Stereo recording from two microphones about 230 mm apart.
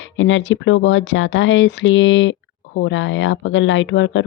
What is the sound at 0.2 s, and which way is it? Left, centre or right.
Speech, left.